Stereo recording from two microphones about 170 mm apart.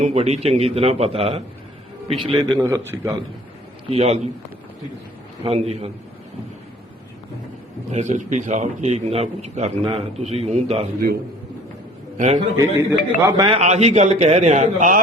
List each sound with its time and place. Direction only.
0.0 s a man's voice: 40° right (ahead or behind)
2.6 s a man's voice: 20° right (ahead or behind)
3.8 s a man's voice: 35° right (ahead or behind)
5.4 s a man's voice: 40° right (ahead or behind)
7.9 s a man's voice: 45° right (ahead or behind)
12.1 s a man's voice: 45° right (ahead or behind)
12.4 s a man's voice: 25° right (ahead or behind)
13.6 s a man's voice: 40° right (ahead or behind)